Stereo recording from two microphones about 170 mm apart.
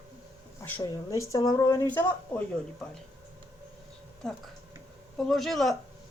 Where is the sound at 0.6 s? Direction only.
15° left (ahead or behind).